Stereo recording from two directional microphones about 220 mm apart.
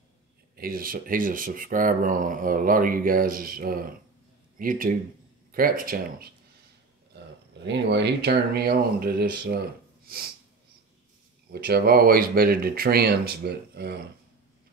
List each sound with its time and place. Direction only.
0.6 s speech: 40° right (ahead or behind)
7.6 s speech: 50° right (ahead or behind)
11.5 s speech: 45° right (ahead or behind)